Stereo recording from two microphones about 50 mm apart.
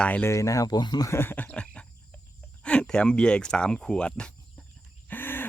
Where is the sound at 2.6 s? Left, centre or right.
Centre.